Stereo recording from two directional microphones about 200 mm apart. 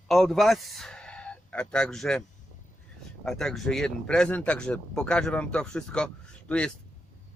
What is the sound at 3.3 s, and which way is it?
Speech, centre (ahead or behind).